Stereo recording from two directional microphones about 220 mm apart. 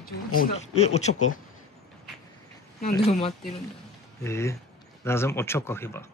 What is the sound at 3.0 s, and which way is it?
Speech, 30° left (ahead or behind).